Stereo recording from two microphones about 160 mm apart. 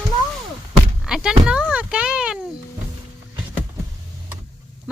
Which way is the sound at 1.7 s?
5° right (ahead or behind).